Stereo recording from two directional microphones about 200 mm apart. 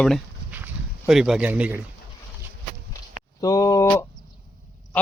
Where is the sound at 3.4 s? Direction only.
15° left (ahead or behind).